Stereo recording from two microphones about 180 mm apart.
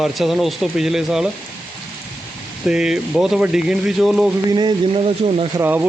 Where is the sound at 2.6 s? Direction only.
5° right (ahead or behind).